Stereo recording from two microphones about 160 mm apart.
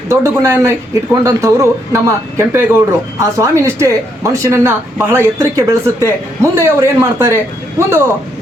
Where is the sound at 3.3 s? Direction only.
20° right (ahead or behind).